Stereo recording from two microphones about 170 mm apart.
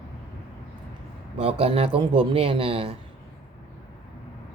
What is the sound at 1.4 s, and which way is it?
Speech, 35° right (ahead or behind).